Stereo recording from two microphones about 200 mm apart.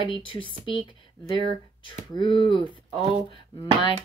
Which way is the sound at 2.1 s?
20° left (ahead or behind).